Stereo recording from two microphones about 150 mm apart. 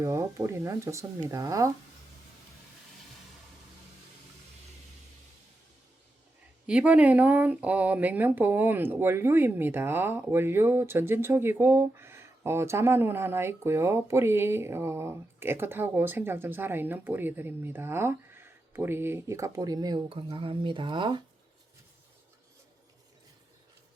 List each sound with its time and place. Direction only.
0.0 s speech: 20° right (ahead or behind)
6.7 s speech: 10° right (ahead or behind); by 21.2 s 30° right (ahead or behind)